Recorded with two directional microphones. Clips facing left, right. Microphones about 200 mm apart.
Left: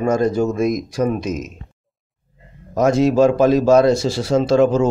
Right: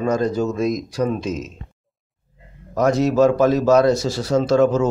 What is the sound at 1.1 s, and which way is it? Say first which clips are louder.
Speech: left 1 dB; 15° left (ahead or behind).